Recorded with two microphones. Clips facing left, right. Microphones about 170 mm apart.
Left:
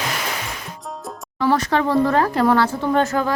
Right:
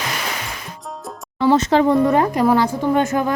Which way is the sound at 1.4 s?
20° right (ahead or behind).